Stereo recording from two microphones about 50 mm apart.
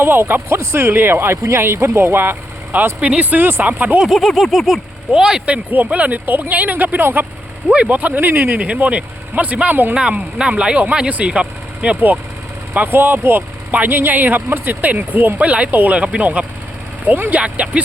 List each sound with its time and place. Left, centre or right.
0.0 s speech: right
1.4 s speech: right
1.6 s speech: right
3.0 s speech: right
4.1 s speech: centre
5.5 s speech: right
6.2 s speech: right
8.5 s speech: right
9.9 s speech: centre
12.7 s speech: right
15.4 s speech: right